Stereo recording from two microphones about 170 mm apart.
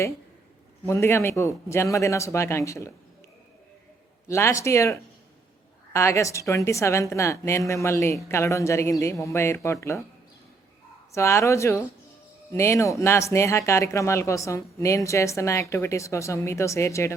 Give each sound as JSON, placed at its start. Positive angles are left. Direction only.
{"t": 0.9, "sound": "a woman's voice", "side_deg": 15}
{"t": 4.3, "sound": "a woman's voice", "side_deg": 15}
{"t": 11.1, "sound": "a woman's voice", "side_deg": 15}